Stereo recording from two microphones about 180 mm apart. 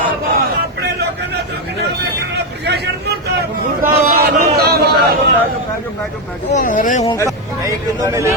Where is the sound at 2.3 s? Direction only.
65° right (ahead or behind).